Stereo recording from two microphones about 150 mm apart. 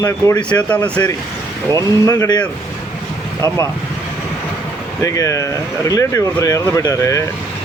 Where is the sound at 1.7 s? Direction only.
20° left (ahead or behind).